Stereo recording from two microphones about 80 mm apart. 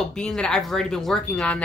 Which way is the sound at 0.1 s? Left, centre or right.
Centre.